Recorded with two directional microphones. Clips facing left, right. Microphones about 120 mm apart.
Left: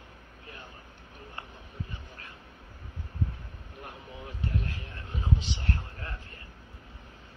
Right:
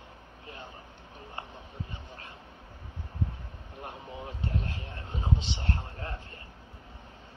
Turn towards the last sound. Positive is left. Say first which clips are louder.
# right 3 dB
turn(degrees=-30)  # may be behind; listen again after turning